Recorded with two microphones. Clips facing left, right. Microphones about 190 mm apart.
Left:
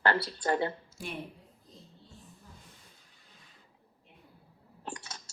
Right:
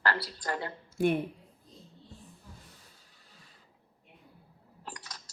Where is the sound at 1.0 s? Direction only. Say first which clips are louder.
Right 16 dB; 55° right (ahead or behind).